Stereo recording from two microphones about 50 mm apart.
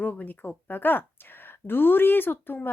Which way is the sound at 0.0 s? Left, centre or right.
Left.